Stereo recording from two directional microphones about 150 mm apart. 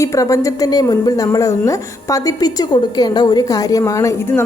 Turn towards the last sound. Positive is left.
turn(degrees=20)  # may be behind; listen again after turning